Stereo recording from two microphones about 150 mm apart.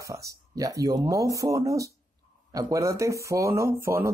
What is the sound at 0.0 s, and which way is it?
Speech, 20° right (ahead or behind).